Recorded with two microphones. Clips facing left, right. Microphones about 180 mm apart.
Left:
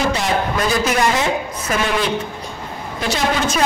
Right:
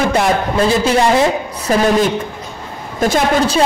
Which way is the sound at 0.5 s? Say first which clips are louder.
Right 5 dB; 30° right (ahead or behind).